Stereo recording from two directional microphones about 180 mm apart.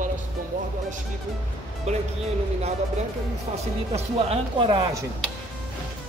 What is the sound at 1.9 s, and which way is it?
Speech, 35° right (ahead or behind).